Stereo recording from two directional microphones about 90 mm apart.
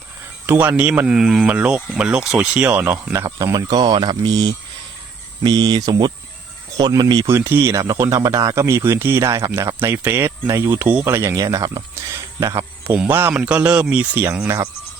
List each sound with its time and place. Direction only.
0.4 s speech: 25° right (ahead or behind)
3.3 s speech: 40° right (ahead or behind)
7.3 s speech: 30° right (ahead or behind)
11.9 s a sound: 35° right (ahead or behind)
13.1 s speech: 25° right (ahead or behind)
14.4 s speech: 35° right (ahead or behind)